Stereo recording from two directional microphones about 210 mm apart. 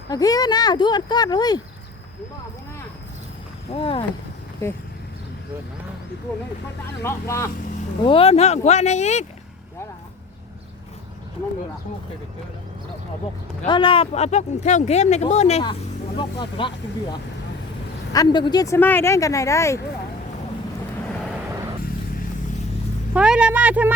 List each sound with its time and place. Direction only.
0.1 s speech: 15° left (ahead or behind)
3.7 s speech: 25° left (ahead or behind)
7.0 s speech: 15° left (ahead or behind)
8.0 s speech: 25° left (ahead or behind)
13.7 s speech: 25° left (ahead or behind)
23.1 s speech: 5° right (ahead or behind)